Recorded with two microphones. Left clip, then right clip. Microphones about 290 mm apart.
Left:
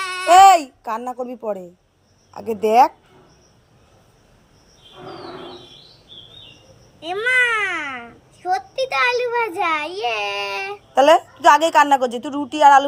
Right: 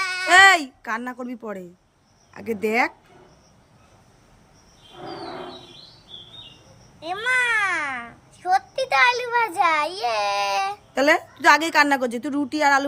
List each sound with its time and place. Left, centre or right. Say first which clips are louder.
0.0 s a sound: left 4 dB; centre
0.8 s a woman's voice: left 3 dB; centre
2.4 s speech: left 8 dB; centre
7.0 s a child's voice: left 4 dB; centre
11.9 s a woman's voice: left 3 dB; right